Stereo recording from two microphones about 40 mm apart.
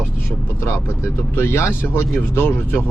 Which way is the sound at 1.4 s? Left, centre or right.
Left.